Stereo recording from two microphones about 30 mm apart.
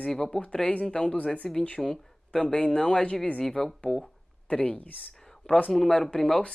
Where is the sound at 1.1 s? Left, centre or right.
Left.